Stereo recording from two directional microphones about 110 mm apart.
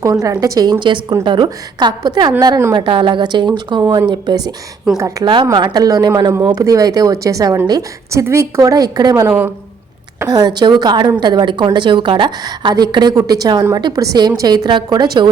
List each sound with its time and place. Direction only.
0.0 s a woman's voice: 30° right (ahead or behind)